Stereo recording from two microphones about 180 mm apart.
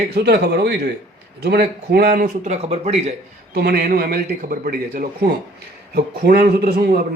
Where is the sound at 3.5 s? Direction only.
55° right (ahead or behind).